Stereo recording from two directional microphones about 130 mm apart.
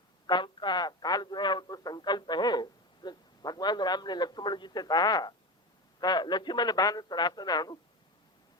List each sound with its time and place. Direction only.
0.3 s speech: 35° left (ahead or behind)